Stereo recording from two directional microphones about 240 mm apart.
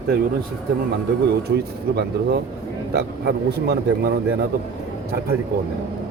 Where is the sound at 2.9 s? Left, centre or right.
Right.